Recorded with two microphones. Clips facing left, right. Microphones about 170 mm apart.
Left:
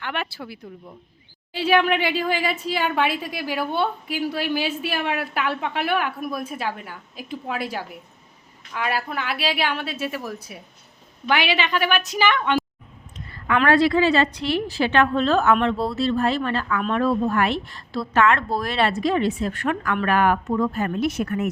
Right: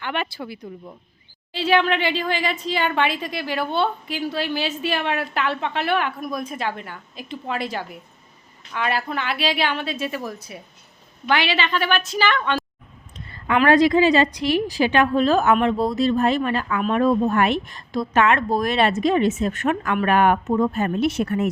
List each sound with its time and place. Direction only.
0.0 s a woman's voice: centre (ahead or behind)
13.1 s a sound: 25° right (ahead or behind)
13.7 s a woman's voice: 15° right (ahead or behind)